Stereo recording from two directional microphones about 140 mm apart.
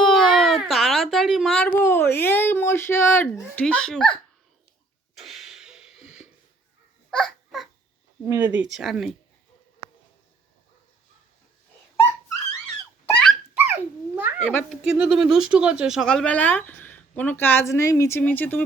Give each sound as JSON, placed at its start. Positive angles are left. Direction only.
{"t": 0.0, "sound": "a sound", "side_deg": 0}
{"t": 3.5, "sound": "speech", "side_deg": 10}
{"t": 5.1, "sound": "a sound", "side_deg": 0}
{"t": 7.1, "sound": "babbling", "side_deg": 0}
{"t": 8.3, "sound": "speech", "side_deg": -15}
{"t": 8.6, "sound": "speech", "side_deg": 0}
{"t": 13.5, "sound": "dog", "side_deg": -10}
{"t": 14.4, "sound": "speech", "side_deg": 5}
{"t": 14.8, "sound": "speech", "side_deg": -10}